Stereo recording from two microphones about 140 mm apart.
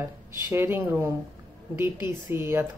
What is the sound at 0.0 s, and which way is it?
A woman's voice, 20° right (ahead or behind).